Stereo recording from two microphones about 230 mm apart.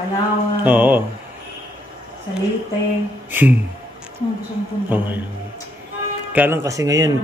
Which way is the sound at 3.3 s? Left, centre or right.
Centre.